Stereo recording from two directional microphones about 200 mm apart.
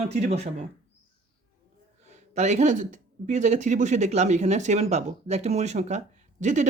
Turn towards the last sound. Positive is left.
turn(degrees=-35)  # may be behind; listen again after turning